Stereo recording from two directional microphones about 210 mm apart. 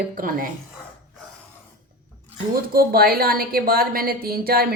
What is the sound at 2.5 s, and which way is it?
A woman's voice, 45° right (ahead or behind).